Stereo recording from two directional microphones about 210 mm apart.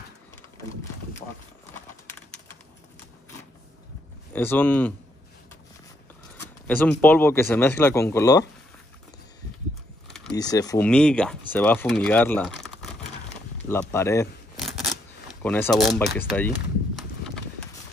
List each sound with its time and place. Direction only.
4.3 s speech: 10° left (ahead or behind)
6.3 s a sound: 10° left (ahead or behind)
7.0 s speech: 10° left (ahead or behind)
10.0 s a sound: centre (ahead or behind)
10.3 s speech: 15° left (ahead or behind)
10.9 s speech: 5° left (ahead or behind)
14.6 s scissors: centre (ahead or behind)
15.4 s speech: 10° left (ahead or behind)